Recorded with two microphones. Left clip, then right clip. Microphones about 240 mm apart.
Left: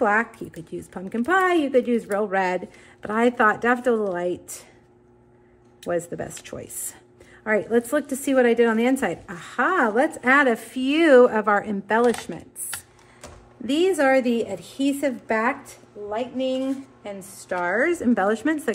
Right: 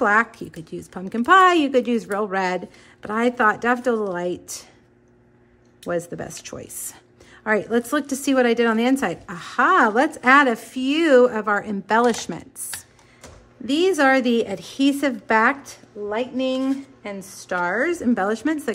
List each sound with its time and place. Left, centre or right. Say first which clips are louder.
0.0 s speech: right 3 dB; centre
5.9 s a woman's voice: even; centre
12.7 s a sound: even; centre
13.7 s speech: right 1 dB; centre
13.9 s speech: right 3 dB; centre
16.1 s a sound: right 2 dB; right
17.5 s speech: even; centre